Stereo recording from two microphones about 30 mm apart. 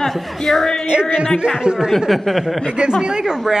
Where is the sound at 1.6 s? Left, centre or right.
Right.